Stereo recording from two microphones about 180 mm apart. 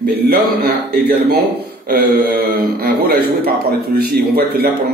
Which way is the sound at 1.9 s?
55° right (ahead or behind).